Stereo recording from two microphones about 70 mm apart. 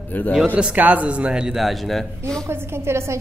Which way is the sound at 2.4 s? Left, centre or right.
Right.